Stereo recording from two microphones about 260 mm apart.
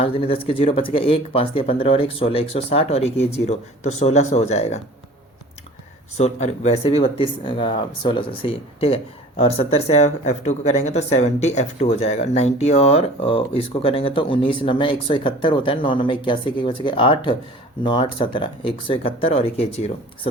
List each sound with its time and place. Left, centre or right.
0.0 s speech: left
6.1 s speech: left